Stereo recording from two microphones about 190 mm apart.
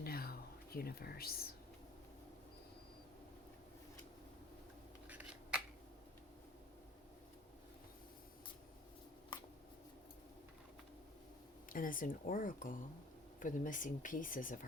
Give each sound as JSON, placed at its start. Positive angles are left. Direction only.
{"t": 0.0, "sound": "whispering", "side_deg": 55}
{"t": 5.0, "sound": "a sound", "side_deg": -5}
{"t": 11.7, "sound": "speech", "side_deg": 45}